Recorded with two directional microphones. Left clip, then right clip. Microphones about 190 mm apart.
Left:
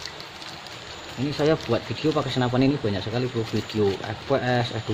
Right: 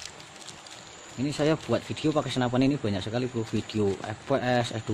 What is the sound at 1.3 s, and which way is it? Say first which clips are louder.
Speech: left 4 dB; 55° right (ahead or behind).